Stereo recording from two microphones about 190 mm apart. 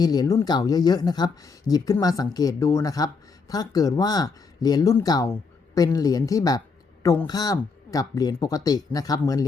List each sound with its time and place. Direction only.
0.0 s speech: 20° left (ahead or behind)